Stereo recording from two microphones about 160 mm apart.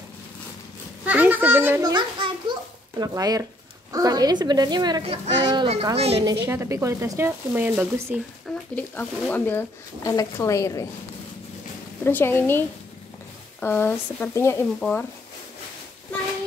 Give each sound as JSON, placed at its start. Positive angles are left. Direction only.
{"t": 1.0, "sound": "a sound", "side_deg": -10}
{"t": 1.8, "sound": "a sound", "side_deg": -25}
{"t": 3.0, "sound": "a woman's voice", "side_deg": -20}
{"t": 5.0, "sound": "speech", "side_deg": -40}
{"t": 5.4, "sound": "a woman's voice", "side_deg": -25}
{"t": 5.9, "sound": "speech", "side_deg": -40}
{"t": 6.4, "sound": "speech", "side_deg": -15}
{"t": 8.7, "sound": "speech", "side_deg": 10}
{"t": 12.0, "sound": "speech", "side_deg": 10}
{"t": 14.8, "sound": "speech", "side_deg": 5}